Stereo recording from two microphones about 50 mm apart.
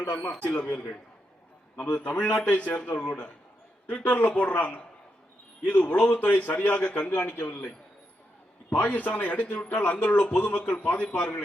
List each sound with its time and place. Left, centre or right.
1.8 s a man's voice: left
8.7 s a man's voice: left